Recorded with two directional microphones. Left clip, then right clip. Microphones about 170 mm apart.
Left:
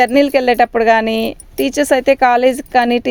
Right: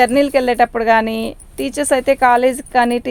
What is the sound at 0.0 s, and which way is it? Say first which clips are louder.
Speech: left 2 dB; 35° left (ahead or behind).